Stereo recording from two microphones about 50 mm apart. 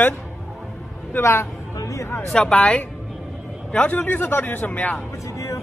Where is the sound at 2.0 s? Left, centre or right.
Left.